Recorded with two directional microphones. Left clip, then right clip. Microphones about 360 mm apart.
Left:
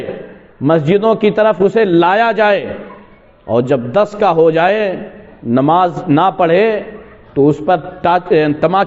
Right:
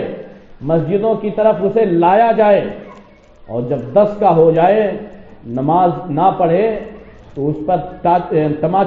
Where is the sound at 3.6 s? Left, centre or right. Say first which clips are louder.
Right 5 dB; left.